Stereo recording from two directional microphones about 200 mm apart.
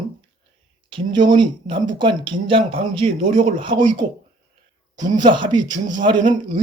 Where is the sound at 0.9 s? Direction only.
25° right (ahead or behind).